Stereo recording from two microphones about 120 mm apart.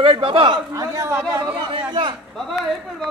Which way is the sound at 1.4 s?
45° right (ahead or behind).